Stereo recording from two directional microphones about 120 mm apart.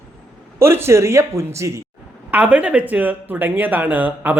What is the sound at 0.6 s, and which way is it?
Speech, 20° right (ahead or behind).